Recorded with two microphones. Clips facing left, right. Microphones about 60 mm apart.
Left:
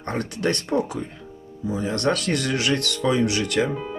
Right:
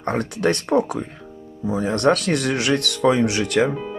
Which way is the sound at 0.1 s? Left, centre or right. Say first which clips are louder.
Right 4 dB; right.